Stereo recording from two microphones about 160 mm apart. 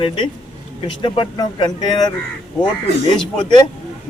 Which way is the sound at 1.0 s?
30° left (ahead or behind).